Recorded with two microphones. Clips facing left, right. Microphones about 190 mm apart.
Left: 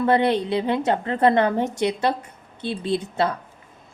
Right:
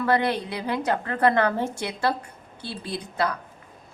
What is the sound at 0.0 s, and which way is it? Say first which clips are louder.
A woman's voice: left 4 dB; 25° left (ahead or behind).